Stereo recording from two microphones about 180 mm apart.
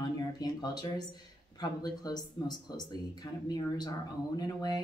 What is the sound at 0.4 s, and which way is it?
Speech, 20° left (ahead or behind).